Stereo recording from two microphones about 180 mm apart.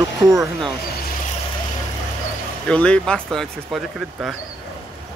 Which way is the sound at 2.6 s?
5° left (ahead or behind).